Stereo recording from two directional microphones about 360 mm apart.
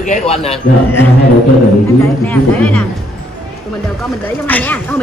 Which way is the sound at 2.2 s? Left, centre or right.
Centre.